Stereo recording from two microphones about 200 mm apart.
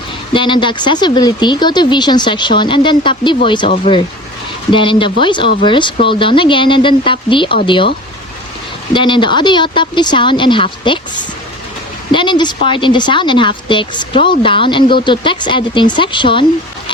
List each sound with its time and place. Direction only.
0.3 s a woman's voice: 25° left (ahead or behind)
12.1 s a woman's voice: 25° left (ahead or behind)